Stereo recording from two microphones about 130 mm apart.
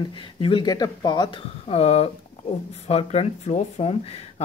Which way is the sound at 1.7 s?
55° left (ahead or behind).